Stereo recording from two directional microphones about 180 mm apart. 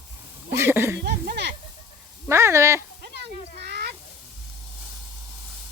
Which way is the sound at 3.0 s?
65° right (ahead or behind).